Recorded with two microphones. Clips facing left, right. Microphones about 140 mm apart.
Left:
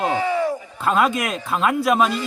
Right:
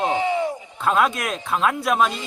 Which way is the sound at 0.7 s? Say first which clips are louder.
Even; centre (ahead or behind).